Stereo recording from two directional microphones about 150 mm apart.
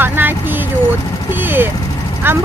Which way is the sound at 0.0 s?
15° right (ahead or behind).